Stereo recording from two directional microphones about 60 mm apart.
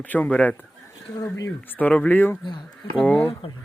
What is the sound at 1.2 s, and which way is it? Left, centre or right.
Speech, left.